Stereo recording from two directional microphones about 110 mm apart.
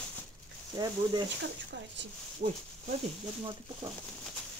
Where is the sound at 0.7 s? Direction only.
45° right (ahead or behind).